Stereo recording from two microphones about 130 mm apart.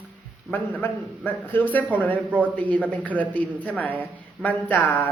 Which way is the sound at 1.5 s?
15° left (ahead or behind).